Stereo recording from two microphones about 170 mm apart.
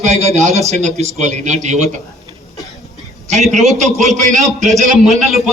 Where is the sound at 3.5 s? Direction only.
45° right (ahead or behind).